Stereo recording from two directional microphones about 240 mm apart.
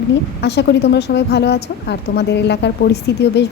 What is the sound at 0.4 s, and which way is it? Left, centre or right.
A woman's voice, left.